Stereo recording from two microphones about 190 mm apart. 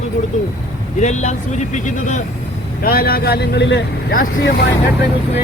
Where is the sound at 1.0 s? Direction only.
40° left (ahead or behind).